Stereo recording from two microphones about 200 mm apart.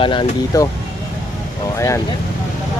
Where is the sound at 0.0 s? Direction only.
20° left (ahead or behind).